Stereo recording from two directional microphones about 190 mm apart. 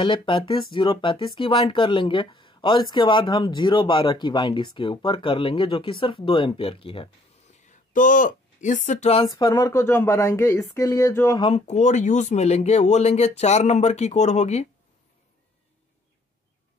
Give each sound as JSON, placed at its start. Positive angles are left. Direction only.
{"t": 0.0, "sound": "speech", "side_deg": 25}
{"t": 7.6, "sound": "speech", "side_deg": 45}
{"t": 11.4, "sound": "speech", "side_deg": 35}